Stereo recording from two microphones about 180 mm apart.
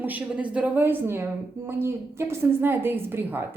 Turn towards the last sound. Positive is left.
turn(degrees=-10)  # may be behind; listen again after turning